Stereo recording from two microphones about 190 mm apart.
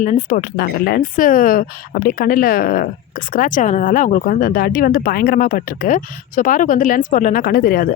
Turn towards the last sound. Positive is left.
turn(degrees=50)  # may be behind; listen again after turning